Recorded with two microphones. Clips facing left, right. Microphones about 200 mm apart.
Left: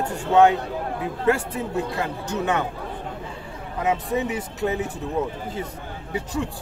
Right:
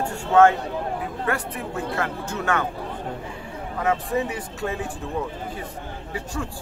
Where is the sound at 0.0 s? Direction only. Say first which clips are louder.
Even; 20° left (ahead or behind).